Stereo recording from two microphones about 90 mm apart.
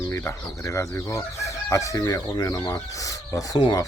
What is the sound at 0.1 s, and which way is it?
Speech, 30° left (ahead or behind).